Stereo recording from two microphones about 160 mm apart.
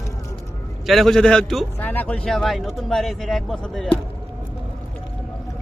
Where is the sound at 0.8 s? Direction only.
Centre (ahead or behind).